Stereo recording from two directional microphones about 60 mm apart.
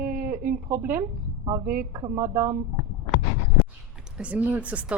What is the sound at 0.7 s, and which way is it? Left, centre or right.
Speech, right.